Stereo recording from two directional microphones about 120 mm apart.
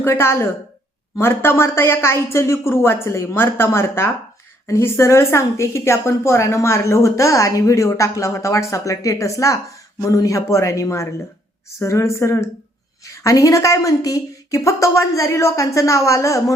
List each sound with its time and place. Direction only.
0.0 s a woman's voice: 20° left (ahead or behind)